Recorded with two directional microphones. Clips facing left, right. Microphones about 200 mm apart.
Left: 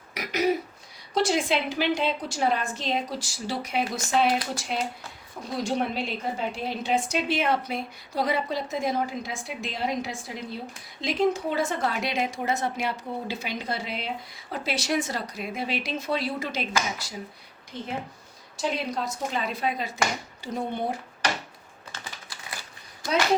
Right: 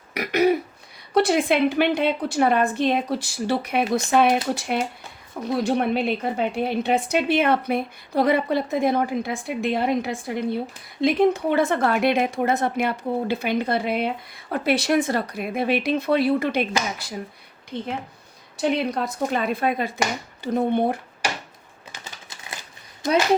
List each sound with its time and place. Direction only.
0.1 s throat clearing: 60° right (ahead or behind)
1.1 s a woman's voice: 60° right (ahead or behind)
18.5 s a woman's voice: 60° right (ahead or behind)
21.9 s typing: 20° right (ahead or behind)